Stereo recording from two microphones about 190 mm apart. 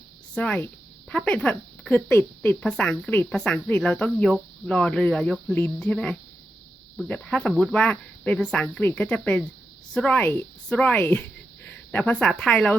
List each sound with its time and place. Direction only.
0.3 s speech: 5° left (ahead or behind)